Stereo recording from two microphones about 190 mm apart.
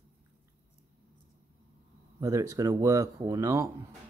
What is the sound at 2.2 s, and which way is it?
Speech, 15° right (ahead or behind).